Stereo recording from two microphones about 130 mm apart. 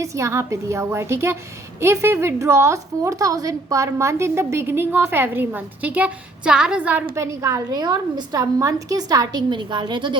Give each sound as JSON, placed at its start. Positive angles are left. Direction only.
{"t": 0.0, "sound": "a woman's voice", "side_deg": -25}
{"t": 7.2, "sound": "a woman's voice", "side_deg": -25}